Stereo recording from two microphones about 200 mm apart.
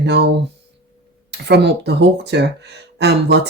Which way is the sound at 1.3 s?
55° right (ahead or behind).